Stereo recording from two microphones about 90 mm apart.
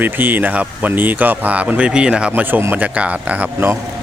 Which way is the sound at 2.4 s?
20° right (ahead or behind).